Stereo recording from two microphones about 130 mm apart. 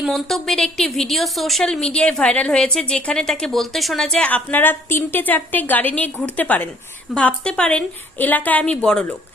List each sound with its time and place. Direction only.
0.0 s a woman's voice: centre (ahead or behind)